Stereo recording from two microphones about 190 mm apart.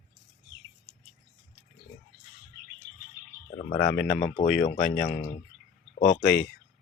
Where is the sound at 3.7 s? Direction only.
15° left (ahead or behind).